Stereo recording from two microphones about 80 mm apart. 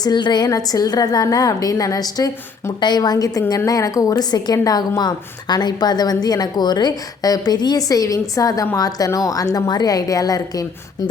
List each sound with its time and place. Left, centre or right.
0.0 s a woman's voice: left
4.1 s a woman's voice: left